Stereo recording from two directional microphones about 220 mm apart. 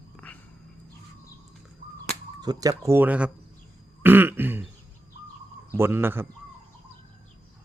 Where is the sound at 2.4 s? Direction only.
15° right (ahead or behind).